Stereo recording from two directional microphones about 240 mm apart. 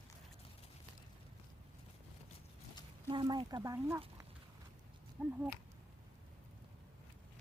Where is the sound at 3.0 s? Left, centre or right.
Centre.